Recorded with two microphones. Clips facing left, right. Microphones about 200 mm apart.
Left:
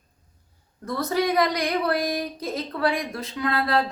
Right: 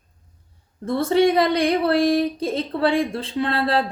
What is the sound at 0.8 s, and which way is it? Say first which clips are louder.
Speech: right 7 dB; 25° right (ahead or behind).